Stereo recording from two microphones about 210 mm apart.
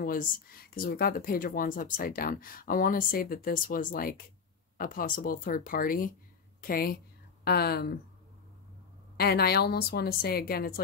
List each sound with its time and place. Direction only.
0.0 s speech: 40° left (ahead or behind)
9.1 s speech: 50° left (ahead or behind)